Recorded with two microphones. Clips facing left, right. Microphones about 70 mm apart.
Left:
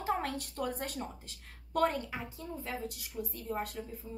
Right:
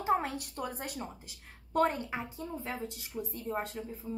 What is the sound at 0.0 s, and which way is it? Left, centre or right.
Speech, centre.